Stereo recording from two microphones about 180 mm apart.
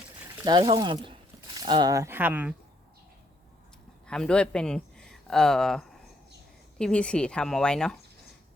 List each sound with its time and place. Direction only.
0.4 s speech: 25° right (ahead or behind); by 2.6 s 10° right (ahead or behind)
4.0 s speech: 5° left (ahead or behind)